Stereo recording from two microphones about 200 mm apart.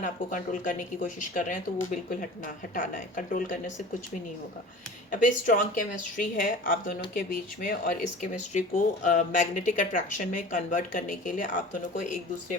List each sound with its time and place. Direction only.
0.0 s speech: 40° left (ahead or behind)
5.2 s speech: 40° left (ahead or behind)